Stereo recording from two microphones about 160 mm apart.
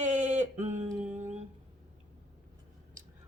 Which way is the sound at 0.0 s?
45° right (ahead or behind).